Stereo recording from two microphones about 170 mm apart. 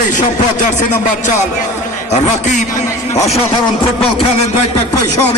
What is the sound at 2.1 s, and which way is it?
Speech, 45° left (ahead or behind).